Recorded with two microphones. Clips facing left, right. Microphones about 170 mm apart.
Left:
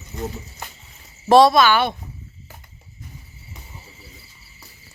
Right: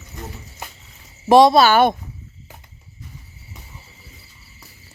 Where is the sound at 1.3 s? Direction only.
15° right (ahead or behind).